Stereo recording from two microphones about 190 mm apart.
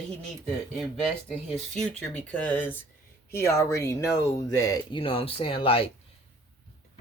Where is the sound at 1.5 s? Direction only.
5° left (ahead or behind); by 5.9 s 30° left (ahead or behind).